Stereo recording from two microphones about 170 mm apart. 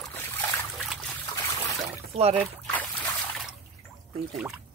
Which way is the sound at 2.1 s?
35° right (ahead or behind).